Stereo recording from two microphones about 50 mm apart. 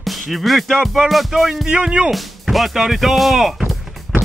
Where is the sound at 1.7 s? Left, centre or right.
Centre.